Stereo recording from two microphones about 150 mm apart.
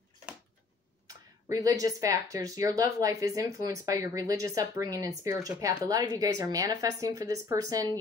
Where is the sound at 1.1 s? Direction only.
25° right (ahead or behind).